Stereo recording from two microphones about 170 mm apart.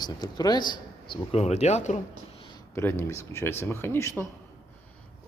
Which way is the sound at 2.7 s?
15° left (ahead or behind).